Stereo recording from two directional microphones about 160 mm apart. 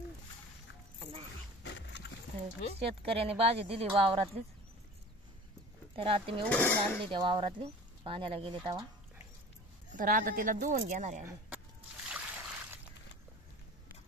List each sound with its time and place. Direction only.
0.9 s music: 35° right (ahead or behind)
1.8 s a sound: 90° left
2.8 s speech: 35° right (ahead or behind)
5.9 s speech: 35° right (ahead or behind)
6.5 s speech: 15° left (ahead or behind)
7.1 s speech: 30° right (ahead or behind)
9.9 s speech: 60° right (ahead or behind)
12.1 s a sound: 10° right (ahead or behind)